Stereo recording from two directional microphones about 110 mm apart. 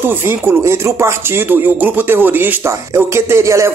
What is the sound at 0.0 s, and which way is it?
Speech, 20° right (ahead or behind).